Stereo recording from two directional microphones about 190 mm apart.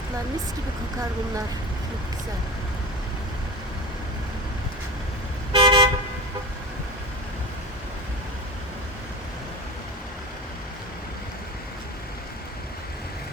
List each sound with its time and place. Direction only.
5.5 s toot: 25° right (ahead or behind)